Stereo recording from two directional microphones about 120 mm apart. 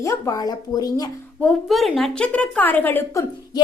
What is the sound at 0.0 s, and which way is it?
A woman's voice, 25° left (ahead or behind).